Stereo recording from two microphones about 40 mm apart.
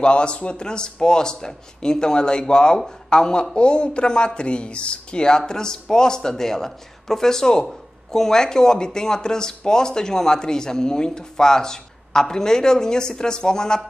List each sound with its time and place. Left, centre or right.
0.0 s speech: left